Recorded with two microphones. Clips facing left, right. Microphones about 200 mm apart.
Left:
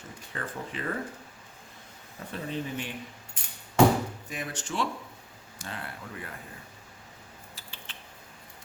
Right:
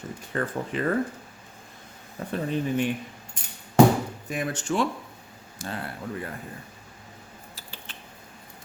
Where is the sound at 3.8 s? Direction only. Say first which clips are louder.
Right 4 dB; 40° right (ahead or behind).